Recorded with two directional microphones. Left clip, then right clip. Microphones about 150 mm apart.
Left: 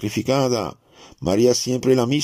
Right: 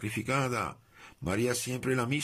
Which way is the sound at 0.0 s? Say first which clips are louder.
Left 11 dB; 35° left (ahead or behind).